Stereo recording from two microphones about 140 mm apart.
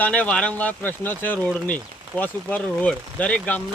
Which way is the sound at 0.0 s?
10° left (ahead or behind).